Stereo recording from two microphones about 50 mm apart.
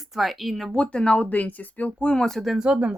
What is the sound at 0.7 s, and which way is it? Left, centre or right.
Speech, left.